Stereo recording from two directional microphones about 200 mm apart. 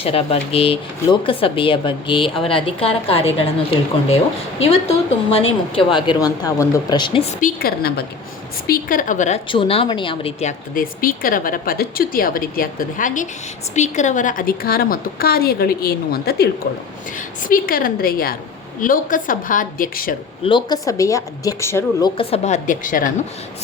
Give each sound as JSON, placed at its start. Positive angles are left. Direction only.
{"t": 0.0, "sound": "speech", "side_deg": 30}
{"t": 4.6, "sound": "speech", "side_deg": 30}
{"t": 7.4, "sound": "a woman's voice", "side_deg": 50}
{"t": 9.5, "sound": "speech", "side_deg": 25}
{"t": 10.8, "sound": "a woman's voice", "side_deg": 45}
{"t": 20.4, "sound": "a woman's voice", "side_deg": 25}
{"t": 22.2, "sound": "a woman's voice", "side_deg": 30}